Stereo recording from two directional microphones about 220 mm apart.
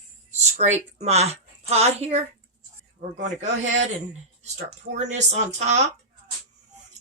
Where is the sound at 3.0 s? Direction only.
40° right (ahead or behind).